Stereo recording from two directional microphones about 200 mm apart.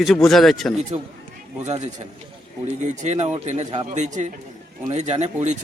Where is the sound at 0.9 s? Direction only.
35° right (ahead or behind).